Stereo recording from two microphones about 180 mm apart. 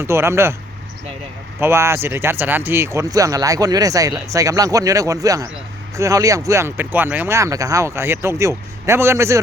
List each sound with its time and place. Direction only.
0.0 s speech: 15° right (ahead or behind)
1.5 s speech: 15° right (ahead or behind)